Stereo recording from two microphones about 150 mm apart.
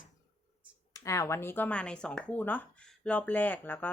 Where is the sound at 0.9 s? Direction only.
20° left (ahead or behind).